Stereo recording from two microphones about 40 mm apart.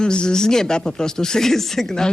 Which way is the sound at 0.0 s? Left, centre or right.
Left.